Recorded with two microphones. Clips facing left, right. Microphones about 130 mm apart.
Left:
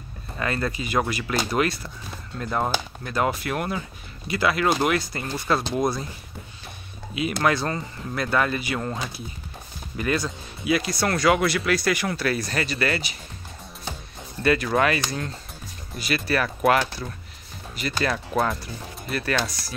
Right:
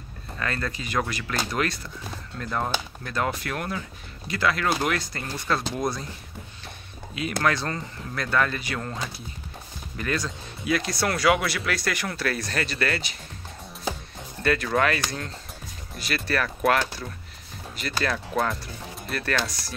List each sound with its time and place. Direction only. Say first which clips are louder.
0.4 s speech: left 4 dB; 10° left (ahead or behind)
7.4 s speech: left 2 dB; 10° left (ahead or behind)
14.4 s speech: left 2 dB; 5° left (ahead or behind)